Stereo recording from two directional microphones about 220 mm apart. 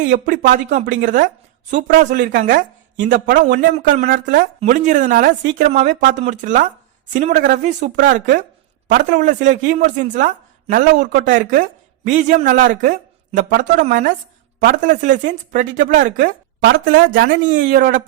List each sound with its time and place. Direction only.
0.1 s speech: 35° right (ahead or behind)
3.0 s a man's voice: 50° right (ahead or behind)
3.3 s speech: 40° right (ahead or behind)